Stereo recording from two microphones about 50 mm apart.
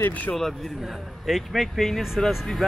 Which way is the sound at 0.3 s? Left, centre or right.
Centre.